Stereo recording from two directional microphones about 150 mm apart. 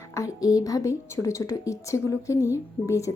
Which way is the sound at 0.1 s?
20° left (ahead or behind).